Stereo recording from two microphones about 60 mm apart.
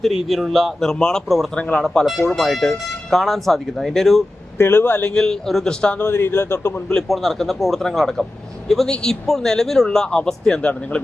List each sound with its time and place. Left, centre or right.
0.0 s a man's voice: centre
0.9 s speech: centre
1.8 s speech: centre
2.0 s a man's voice: centre
4.5 s speech: left
5.1 s speech: centre
5.6 s speech: centre
6.1 s a man's voice: left
7.1 s a man's voice: centre